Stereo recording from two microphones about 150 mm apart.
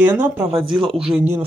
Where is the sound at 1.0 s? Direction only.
5° right (ahead or behind).